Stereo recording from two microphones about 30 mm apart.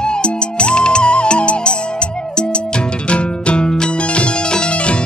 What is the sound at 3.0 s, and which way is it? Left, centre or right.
Music, left.